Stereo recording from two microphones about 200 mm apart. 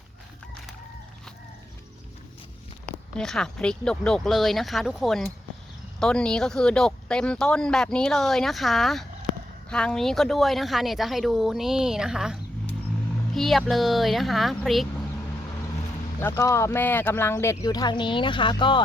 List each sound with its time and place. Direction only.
2.8 s speech: 5° left (ahead or behind)
16.2 s speech: 15° left (ahead or behind)